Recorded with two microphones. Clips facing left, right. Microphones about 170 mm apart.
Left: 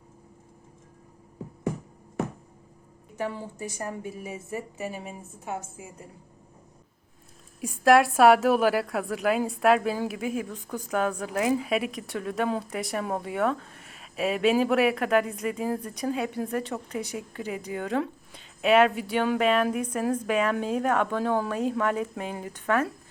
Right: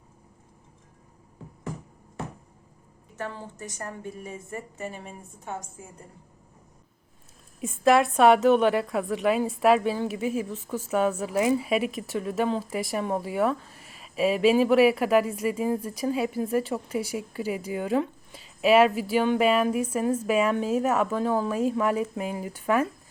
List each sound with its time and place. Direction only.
3.2 s a woman's voice: 10° left (ahead or behind)
7.6 s speech: centre (ahead or behind)